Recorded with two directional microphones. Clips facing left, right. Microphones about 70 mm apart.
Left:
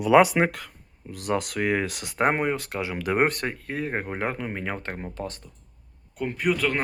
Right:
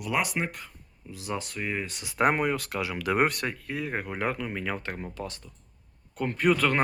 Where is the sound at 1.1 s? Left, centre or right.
Left.